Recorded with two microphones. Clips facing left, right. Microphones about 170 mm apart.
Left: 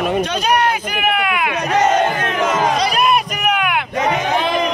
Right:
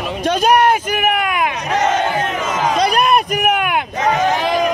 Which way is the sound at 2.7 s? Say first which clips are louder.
Right 2 dB; 55° right (ahead or behind).